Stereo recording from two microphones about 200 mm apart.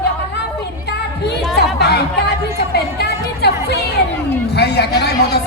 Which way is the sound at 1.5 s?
55° left (ahead or behind).